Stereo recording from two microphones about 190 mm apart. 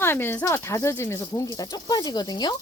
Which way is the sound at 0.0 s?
10° left (ahead or behind).